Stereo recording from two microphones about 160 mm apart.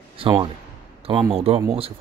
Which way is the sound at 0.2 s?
30° right (ahead or behind).